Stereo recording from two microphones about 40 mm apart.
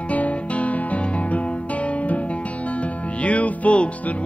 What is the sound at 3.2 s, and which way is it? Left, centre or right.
Music, left.